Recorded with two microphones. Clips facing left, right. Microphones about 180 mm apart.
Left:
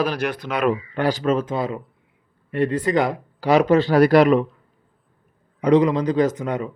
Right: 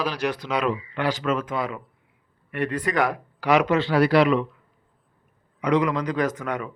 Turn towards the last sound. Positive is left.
turn(degrees=25)  # may be behind; listen again after turning